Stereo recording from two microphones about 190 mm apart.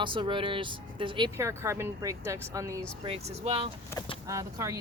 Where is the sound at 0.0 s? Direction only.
25° right (ahead or behind).